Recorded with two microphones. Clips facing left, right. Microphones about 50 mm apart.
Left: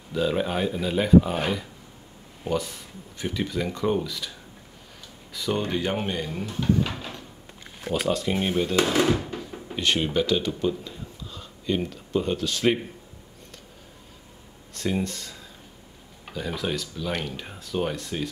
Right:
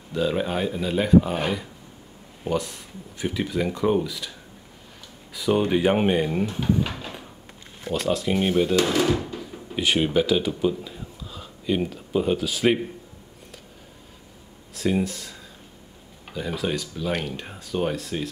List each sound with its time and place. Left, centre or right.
0.1 s speech: centre
5.3 s speech: centre
6.9 s a sound: centre
7.9 s speech: centre
8.9 s speech: centre
9.8 s speech: centre
14.7 s speech: centre